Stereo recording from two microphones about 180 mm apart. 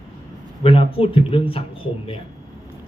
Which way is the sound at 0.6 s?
30° left (ahead or behind).